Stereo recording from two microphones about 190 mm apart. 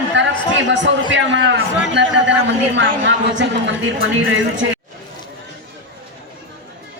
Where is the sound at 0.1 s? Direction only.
70° right (ahead or behind).